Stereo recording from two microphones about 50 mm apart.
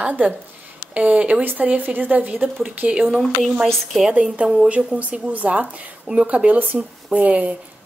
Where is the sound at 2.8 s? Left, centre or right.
Centre.